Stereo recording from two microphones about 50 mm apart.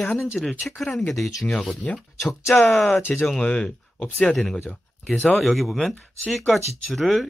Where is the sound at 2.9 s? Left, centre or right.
Left.